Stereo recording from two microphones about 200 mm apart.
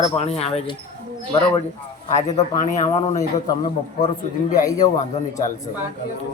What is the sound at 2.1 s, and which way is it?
Speech, 35° left (ahead or behind).